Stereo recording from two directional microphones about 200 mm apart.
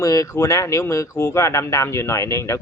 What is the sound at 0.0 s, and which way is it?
Speech, 15° left (ahead or behind).